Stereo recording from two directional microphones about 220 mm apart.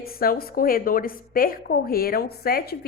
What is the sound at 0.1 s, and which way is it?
A woman's voice, 45° left (ahead or behind).